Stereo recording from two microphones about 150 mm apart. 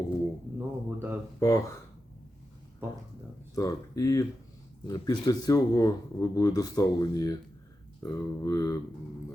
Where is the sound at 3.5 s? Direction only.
20° left (ahead or behind).